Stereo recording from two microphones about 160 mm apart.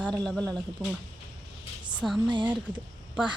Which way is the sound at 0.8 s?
10° right (ahead or behind).